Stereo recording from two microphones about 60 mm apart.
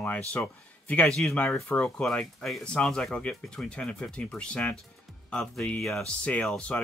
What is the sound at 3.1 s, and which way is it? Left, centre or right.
Speech, centre.